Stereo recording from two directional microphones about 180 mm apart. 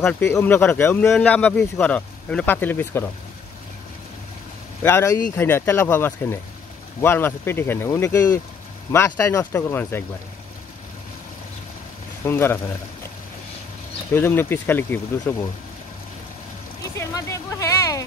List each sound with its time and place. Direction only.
0.0 s speech: 10° left (ahead or behind)
4.8 s speech: 15° left (ahead or behind)
12.2 s speech: 15° left (ahead or behind)
14.1 s speech: 10° left (ahead or behind)
16.9 s speech: 15° left (ahead or behind)